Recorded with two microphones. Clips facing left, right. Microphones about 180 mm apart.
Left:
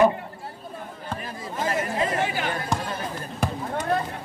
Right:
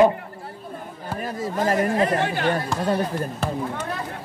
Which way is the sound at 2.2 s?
5° left (ahead or behind).